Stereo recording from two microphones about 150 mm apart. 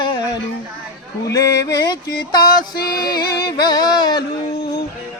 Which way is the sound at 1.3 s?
25° left (ahead or behind).